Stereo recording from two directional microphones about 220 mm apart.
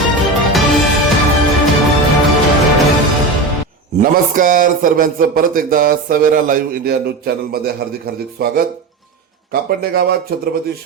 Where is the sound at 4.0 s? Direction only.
40° right (ahead or behind).